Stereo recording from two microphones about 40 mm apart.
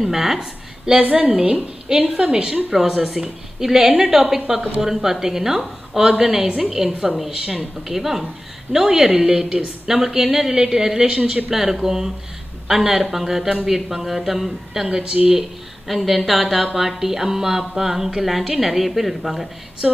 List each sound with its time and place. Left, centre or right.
0.0 s a woman's voice: centre
11.1 s a woman's voice: right
11.5 s speech: centre
15.9 s a sound: centre